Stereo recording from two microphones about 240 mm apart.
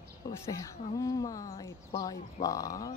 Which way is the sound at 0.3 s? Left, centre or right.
Centre.